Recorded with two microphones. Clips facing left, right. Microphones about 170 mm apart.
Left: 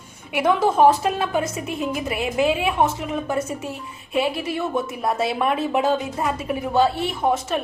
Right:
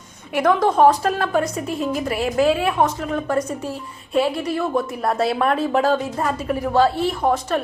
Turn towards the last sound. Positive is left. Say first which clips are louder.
# right 2 dB
turn(degrees=5)  # may be behind; listen again after turning